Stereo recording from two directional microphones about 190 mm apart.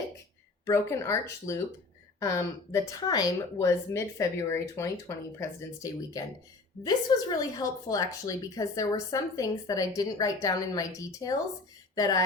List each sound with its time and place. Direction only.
0.6 s a woman's voice: 15° left (ahead or behind)
2.7 s a woman's voice: 20° left (ahead or behind)